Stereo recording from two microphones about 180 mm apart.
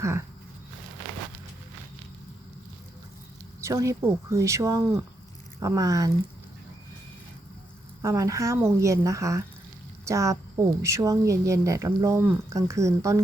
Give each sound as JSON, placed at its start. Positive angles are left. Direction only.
{"t": 0.0, "sound": "speech", "side_deg": -15}
{"t": 3.6, "sound": "speech", "side_deg": -15}
{"t": 8.0, "sound": "speech", "side_deg": -15}